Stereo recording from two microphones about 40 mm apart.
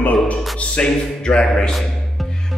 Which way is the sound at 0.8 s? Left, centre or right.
Left.